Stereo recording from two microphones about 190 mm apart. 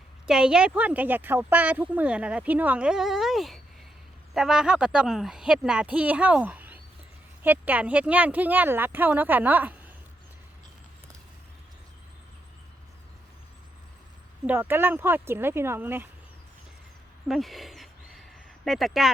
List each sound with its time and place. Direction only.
0.3 s speech: 5° right (ahead or behind)
14.4 s speech: 10° right (ahead or behind)
17.2 s a sound: centre (ahead or behind)